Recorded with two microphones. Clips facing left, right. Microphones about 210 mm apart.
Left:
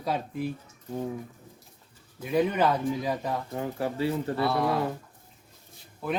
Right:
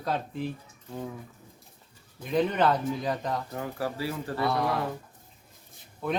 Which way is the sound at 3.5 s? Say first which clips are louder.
Left 2 dB; 20° left (ahead or behind).